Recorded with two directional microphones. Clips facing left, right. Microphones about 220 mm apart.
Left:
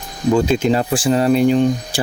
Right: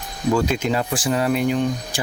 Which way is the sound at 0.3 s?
30° left (ahead or behind).